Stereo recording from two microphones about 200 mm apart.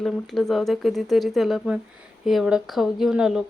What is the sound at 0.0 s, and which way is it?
Speech, centre (ahead or behind).